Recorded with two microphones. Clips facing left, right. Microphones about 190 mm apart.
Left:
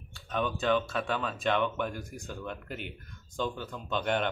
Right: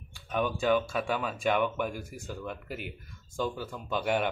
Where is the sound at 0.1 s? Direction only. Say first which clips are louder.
Right 2 dB; 10° right (ahead or behind).